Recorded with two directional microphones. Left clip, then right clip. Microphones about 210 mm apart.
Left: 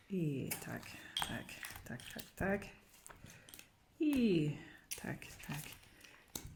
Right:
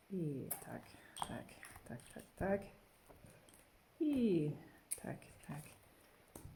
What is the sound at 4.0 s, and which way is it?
Speech, 10° left (ahead or behind).